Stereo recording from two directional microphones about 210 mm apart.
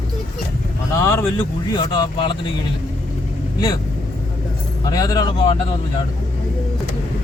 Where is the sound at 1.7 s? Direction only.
20° left (ahead or behind).